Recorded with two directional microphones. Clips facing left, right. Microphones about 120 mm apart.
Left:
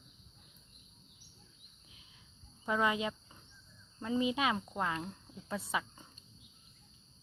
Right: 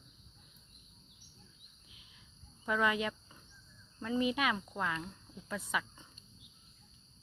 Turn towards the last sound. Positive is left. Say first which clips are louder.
# even
turn(degrees=30)  # may be behind; listen again after turning